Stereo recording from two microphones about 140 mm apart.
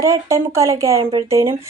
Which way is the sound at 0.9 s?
40° right (ahead or behind).